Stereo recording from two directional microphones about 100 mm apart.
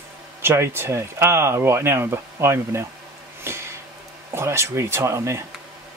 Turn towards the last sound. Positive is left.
turn(degrees=-25)  # may be behind; listen again after turning